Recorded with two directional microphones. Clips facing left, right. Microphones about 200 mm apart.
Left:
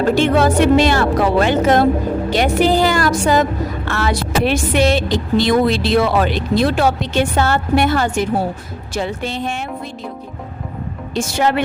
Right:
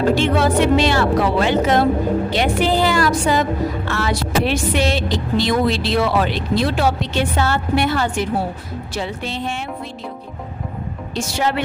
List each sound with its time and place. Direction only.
0.2 s a woman's voice: 45° left (ahead or behind)
11.1 s a woman's voice: 50° left (ahead or behind)